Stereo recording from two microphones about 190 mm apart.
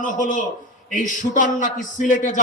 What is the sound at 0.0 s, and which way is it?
A man's voice, 45° left (ahead or behind).